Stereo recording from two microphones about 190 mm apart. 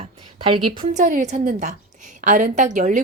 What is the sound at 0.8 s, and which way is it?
A woman's voice, 40° right (ahead or behind).